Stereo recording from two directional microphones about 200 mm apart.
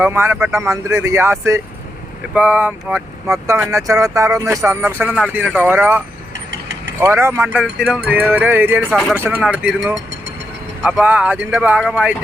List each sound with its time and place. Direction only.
0.0 s speech: 10° right (ahead or behind)
6.3 s mechanisms: 60° right (ahead or behind)
7.0 s speech: 10° right (ahead or behind)
8.9 s speech: centre (ahead or behind)
9.1 s speech: 10° right (ahead or behind)